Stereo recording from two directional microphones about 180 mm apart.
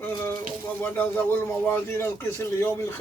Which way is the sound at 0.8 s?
10° left (ahead or behind).